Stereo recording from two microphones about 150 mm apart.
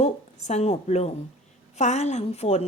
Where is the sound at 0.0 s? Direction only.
50° left (ahead or behind).